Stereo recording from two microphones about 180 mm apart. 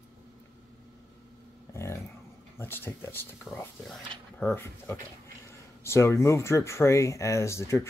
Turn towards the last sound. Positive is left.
turn(degrees=15)  # may be behind; listen again after turning